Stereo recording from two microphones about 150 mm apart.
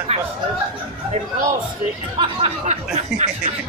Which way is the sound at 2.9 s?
55° right (ahead or behind).